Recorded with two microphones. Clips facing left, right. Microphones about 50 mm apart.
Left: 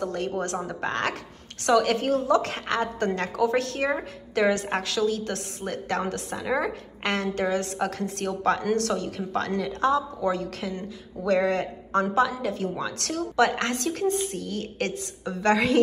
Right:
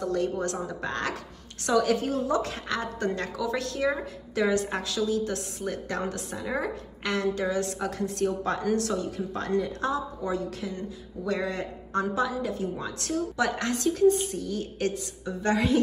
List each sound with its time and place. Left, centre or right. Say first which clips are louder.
0.0 s a woman's voice: right 1 dB; left